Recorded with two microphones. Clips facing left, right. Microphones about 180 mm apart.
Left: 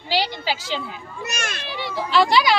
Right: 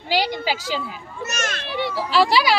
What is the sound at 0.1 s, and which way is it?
Speech, 50° right (ahead or behind).